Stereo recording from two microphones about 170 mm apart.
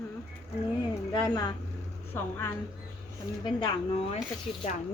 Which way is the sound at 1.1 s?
25° left (ahead or behind).